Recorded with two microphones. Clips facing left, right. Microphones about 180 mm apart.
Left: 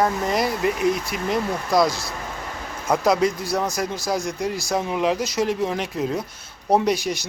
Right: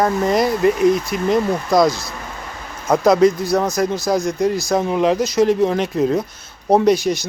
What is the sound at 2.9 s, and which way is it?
Speech, 45° right (ahead or behind).